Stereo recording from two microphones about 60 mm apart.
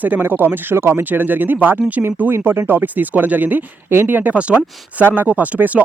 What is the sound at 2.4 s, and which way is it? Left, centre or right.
Speech, right.